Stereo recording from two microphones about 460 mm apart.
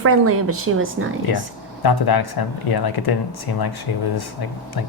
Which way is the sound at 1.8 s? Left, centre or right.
Left.